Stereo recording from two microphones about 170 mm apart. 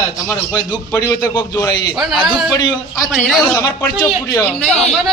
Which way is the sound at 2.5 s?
25° left (ahead or behind).